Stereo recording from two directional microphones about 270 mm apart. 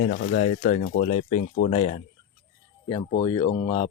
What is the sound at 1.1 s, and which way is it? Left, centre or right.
Speech, left.